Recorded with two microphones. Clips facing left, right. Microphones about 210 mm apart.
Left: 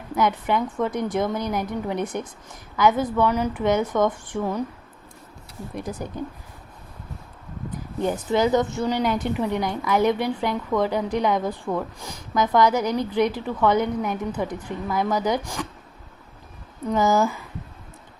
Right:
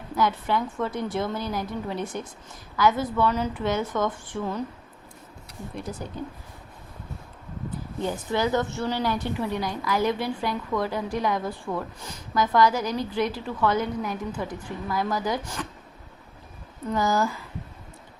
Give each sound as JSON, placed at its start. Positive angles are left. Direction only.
{"t": 0.2, "sound": "a woman's voice", "side_deg": 20}
{"t": 5.7, "sound": "a woman's voice", "side_deg": 15}
{"t": 7.9, "sound": "a woman's voice", "side_deg": 15}
{"t": 16.9, "sound": "a woman's voice", "side_deg": 20}